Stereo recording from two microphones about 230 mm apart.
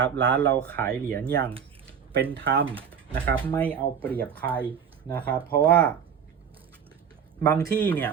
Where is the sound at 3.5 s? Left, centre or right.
Centre.